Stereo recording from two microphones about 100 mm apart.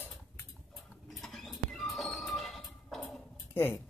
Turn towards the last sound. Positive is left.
turn(degrees=20)  # may be behind; listen again after turning